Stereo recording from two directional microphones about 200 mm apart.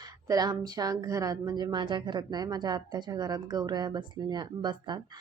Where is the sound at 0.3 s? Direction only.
20° right (ahead or behind).